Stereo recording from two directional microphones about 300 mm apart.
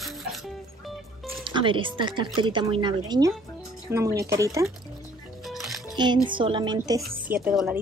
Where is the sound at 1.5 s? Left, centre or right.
Centre.